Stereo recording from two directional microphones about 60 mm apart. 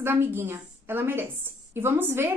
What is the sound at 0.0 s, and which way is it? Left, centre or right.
A woman's voice, right.